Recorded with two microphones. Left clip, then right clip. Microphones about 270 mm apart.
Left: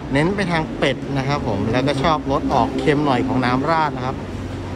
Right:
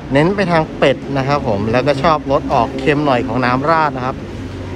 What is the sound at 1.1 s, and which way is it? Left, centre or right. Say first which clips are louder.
Speech: right 6 dB; centre.